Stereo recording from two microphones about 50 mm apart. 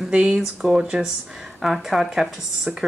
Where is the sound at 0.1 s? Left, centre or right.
Centre.